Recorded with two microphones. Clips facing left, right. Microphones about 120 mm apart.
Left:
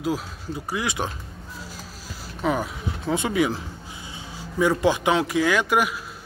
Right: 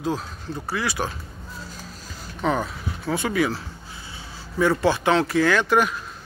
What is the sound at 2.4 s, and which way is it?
Speech, 10° left (ahead or behind).